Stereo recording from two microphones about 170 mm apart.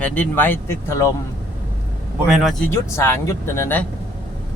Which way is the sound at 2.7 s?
15° left (ahead or behind).